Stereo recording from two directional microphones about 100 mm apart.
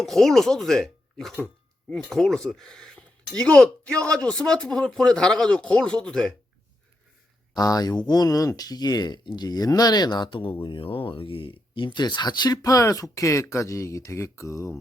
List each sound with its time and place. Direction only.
0.0 s a man's voice: centre (ahead or behind)
7.5 s speech: 40° left (ahead or behind)